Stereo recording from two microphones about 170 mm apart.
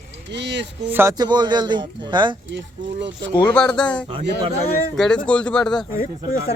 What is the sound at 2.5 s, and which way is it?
Speech, 90° right.